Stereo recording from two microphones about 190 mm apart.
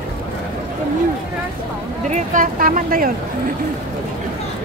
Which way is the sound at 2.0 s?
40° right (ahead or behind).